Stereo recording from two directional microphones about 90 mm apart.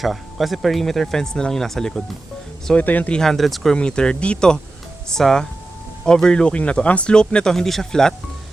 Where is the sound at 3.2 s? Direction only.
5° left (ahead or behind).